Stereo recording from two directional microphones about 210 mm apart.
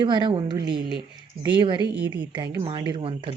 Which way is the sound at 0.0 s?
25° right (ahead or behind).